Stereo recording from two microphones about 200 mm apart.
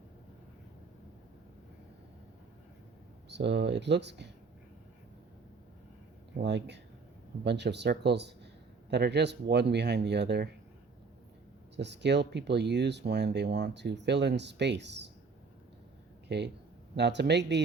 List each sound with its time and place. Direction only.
3.2 s speech: 60° right (ahead or behind)
6.3 s speech: 60° right (ahead or behind)
11.8 s speech: 60° right (ahead or behind)
16.3 s speech: 55° right (ahead or behind)